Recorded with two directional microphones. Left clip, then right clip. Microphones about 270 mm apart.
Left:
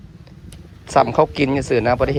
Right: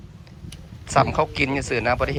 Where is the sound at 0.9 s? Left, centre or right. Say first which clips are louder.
Left 5 dB; centre.